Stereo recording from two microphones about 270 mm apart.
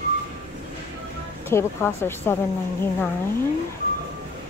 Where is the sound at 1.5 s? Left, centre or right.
Centre.